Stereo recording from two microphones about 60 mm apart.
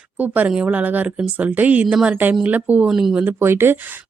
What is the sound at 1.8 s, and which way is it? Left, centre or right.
Speech, centre.